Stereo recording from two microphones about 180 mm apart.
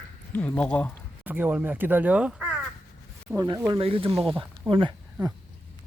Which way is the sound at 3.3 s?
20° right (ahead or behind).